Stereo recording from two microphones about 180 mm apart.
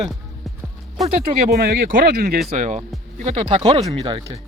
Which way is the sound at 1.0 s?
45° right (ahead or behind).